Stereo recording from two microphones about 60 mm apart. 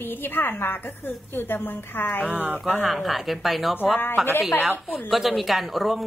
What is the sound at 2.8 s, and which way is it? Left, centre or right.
Speech, centre.